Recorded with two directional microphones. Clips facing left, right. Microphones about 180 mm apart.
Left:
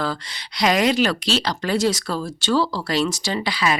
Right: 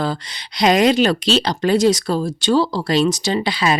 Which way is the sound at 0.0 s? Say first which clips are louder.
Right 3 dB; 20° right (ahead or behind).